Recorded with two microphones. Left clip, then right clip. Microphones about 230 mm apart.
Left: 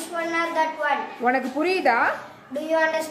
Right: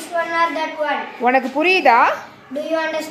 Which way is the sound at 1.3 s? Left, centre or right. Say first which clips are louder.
Right 7 dB; centre.